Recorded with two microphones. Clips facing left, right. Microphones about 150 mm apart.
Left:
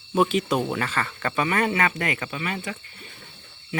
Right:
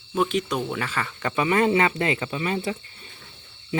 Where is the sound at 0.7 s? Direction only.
5° right (ahead or behind); by 3.1 s 30° right (ahead or behind).